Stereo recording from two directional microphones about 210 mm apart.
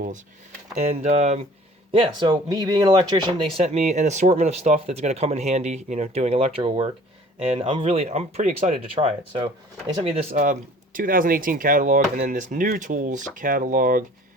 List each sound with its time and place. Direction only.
0.8 s speech: 30° right (ahead or behind)